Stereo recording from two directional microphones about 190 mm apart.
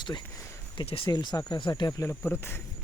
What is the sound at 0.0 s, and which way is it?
Speech, 25° left (ahead or behind).